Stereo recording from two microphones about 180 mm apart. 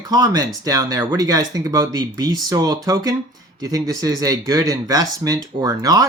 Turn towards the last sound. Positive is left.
turn(degrees=-20)  # may be behind; listen again after turning